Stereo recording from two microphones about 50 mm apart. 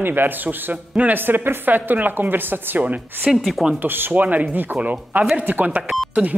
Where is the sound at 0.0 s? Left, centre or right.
Right.